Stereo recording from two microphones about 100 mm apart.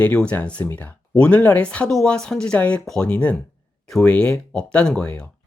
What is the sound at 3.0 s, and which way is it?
Speech, 15° left (ahead or behind).